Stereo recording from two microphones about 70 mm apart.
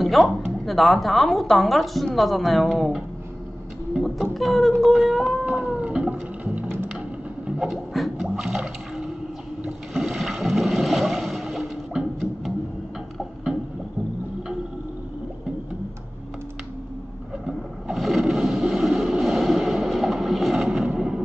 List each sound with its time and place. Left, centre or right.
0.0 s speech: centre
4.0 s cat: centre
4.8 s speech: centre
5.4 s a sound: centre
6.4 s music: centre
7.6 s a sound: centre
9.7 s boat: centre
17.5 s boat: centre
20.9 s music: centre